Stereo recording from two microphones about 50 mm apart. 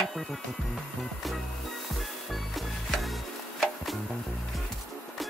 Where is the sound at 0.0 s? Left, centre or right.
Centre.